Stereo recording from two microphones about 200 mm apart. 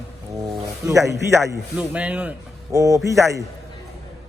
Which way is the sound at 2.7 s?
15° right (ahead or behind).